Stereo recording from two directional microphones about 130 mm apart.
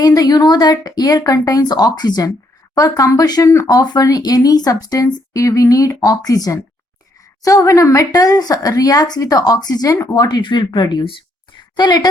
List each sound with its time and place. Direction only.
0.0 s a woman's voice: 30° left (ahead or behind)